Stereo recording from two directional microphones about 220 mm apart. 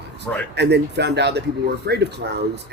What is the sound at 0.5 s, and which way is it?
A man's voice, 50° right (ahead or behind).